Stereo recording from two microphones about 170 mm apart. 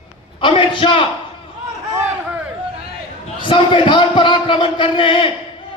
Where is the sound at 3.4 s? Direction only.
30° left (ahead or behind).